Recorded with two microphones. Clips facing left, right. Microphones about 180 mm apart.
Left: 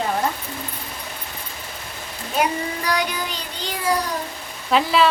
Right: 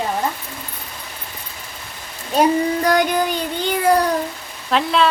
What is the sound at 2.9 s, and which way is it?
Child singing, 50° right (ahead or behind).